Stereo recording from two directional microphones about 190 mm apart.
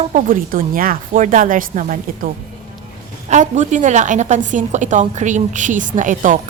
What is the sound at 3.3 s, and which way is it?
A woman's voice, 40° right (ahead or behind).